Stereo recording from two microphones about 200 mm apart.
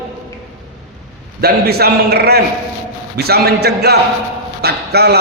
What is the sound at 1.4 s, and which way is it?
A man's voice, 50° right (ahead or behind).